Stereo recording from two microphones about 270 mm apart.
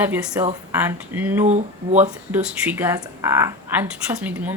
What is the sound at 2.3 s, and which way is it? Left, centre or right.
A woman's voice, centre.